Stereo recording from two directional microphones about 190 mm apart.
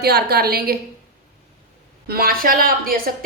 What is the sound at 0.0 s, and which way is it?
Speech, 55° right (ahead or behind).